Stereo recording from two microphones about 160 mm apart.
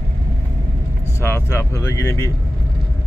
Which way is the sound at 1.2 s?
15° left (ahead or behind).